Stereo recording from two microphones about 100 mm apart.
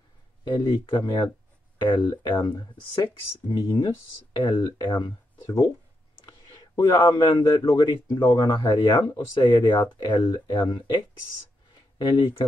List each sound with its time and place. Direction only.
0.5 s speech: 50° left (ahead or behind)
6.2 s a sound: 45° left (ahead or behind)
7.7 s speech: 45° left (ahead or behind)